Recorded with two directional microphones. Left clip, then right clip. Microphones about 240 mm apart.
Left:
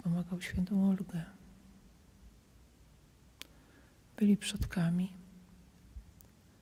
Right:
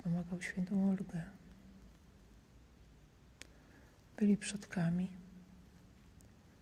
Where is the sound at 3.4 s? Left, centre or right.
Left.